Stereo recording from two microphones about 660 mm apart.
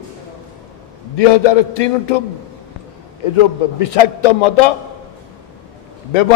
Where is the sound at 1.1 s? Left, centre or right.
Left.